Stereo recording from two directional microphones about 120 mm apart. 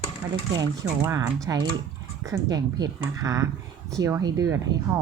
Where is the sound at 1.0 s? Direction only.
25° right (ahead or behind).